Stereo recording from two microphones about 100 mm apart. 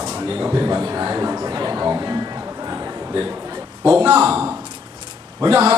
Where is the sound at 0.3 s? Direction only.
20° right (ahead or behind).